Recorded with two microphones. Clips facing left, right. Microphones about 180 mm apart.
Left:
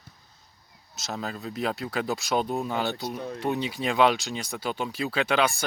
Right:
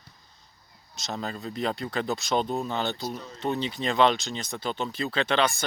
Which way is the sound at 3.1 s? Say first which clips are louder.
Left 6 dB; 60° left (ahead or behind).